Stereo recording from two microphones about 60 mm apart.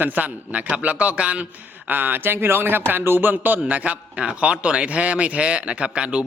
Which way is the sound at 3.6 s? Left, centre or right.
Right.